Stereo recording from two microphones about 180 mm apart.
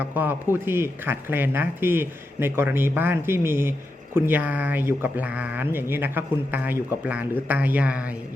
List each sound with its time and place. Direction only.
0.0 s speech: 10° right (ahead or behind)